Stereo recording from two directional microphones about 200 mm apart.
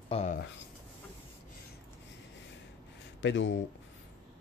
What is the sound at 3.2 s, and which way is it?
Speech, 65° left (ahead or behind).